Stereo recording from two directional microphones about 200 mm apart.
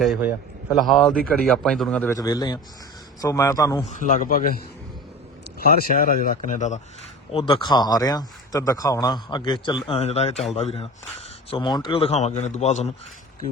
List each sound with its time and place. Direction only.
0.0 s a man's voice: 5° right (ahead or behind); by 3.8 s 15° left (ahead or behind)
3.9 s a man's voice: 40° left (ahead or behind)
5.5 s speech: 45° left (ahead or behind)
7.3 s a man's voice: 25° left (ahead or behind)